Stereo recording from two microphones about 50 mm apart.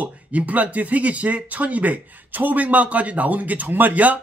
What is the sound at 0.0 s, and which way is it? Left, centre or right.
Speech, right.